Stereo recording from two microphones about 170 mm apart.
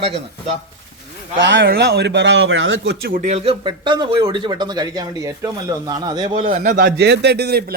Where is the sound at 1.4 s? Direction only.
90° right; by 3.2 s 60° right (ahead or behind).